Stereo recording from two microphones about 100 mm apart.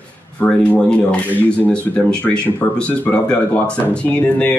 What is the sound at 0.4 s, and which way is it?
Speech, 10° left (ahead or behind).